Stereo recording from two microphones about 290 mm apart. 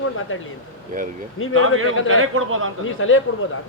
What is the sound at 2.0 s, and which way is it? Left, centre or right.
Speech, right.